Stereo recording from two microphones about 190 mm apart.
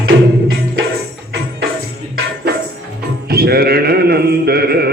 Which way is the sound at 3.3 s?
55° right (ahead or behind).